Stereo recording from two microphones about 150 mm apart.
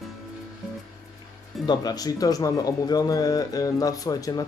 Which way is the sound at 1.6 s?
25° left (ahead or behind).